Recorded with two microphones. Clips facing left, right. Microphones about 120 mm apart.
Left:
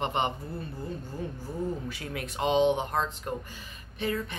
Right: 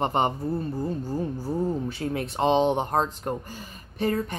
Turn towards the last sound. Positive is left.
turn(degrees=-40)  # may be behind; listen again after turning